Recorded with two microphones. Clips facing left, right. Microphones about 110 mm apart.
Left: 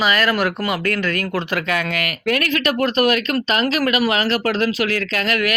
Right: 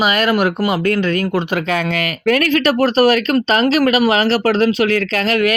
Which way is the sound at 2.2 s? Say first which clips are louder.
Right 6 dB; 40° right (ahead or behind).